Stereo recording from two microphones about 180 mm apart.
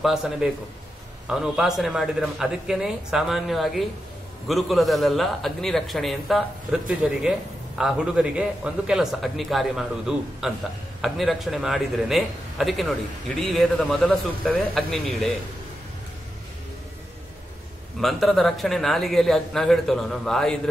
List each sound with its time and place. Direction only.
0.0 s a man's voice: centre (ahead or behind)
18.0 s a man's voice: centre (ahead or behind)